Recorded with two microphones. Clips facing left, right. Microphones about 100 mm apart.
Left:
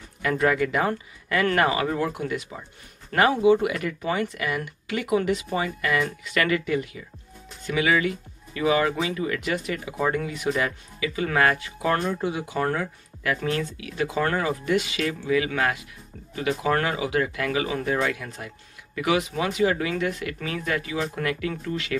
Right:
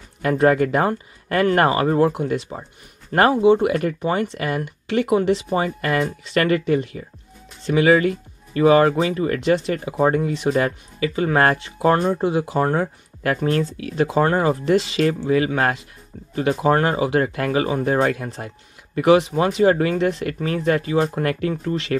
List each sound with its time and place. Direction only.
0.2 s speech: 35° right (ahead or behind)
5.8 s speech: 40° right (ahead or behind)